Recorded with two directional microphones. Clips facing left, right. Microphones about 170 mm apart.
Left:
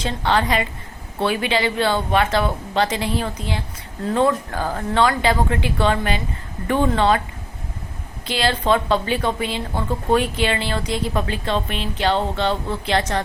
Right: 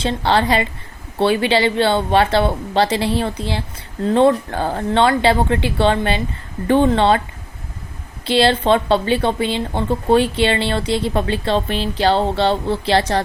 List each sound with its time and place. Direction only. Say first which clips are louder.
0.0 s a woman's voice: right 3 dB; 30° right (ahead or behind)
8.3 s a woman's voice: right 5 dB; 30° right (ahead or behind)